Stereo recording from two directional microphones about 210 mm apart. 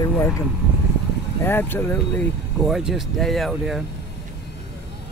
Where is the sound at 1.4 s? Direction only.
10° left (ahead or behind).